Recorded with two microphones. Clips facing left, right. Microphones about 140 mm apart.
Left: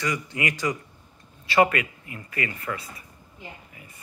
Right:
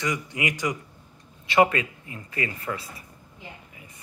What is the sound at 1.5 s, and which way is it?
Speech, 25° right (ahead or behind).